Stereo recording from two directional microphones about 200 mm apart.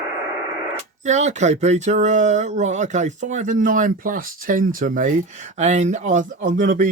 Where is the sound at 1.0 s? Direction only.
35° right (ahead or behind).